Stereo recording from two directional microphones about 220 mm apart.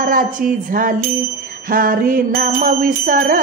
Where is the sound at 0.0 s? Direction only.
40° right (ahead or behind).